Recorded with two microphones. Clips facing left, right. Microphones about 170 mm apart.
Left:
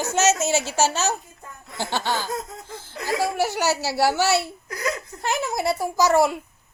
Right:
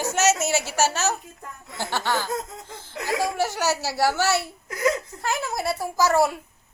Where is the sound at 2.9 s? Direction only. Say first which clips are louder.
Left 1 dB; 20° right (ahead or behind).